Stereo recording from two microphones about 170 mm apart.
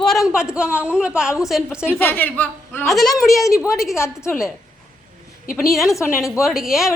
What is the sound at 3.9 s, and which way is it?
Speech, 15° left (ahead or behind).